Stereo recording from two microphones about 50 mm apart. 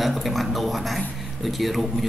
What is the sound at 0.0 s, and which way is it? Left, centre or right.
A man's voice, centre.